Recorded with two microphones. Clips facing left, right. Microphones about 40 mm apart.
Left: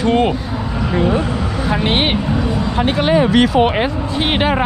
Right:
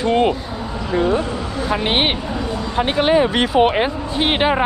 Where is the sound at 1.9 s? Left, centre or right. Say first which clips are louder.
Even; centre.